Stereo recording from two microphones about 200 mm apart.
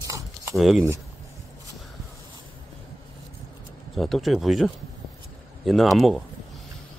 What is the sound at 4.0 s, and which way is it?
Speech, centre (ahead or behind).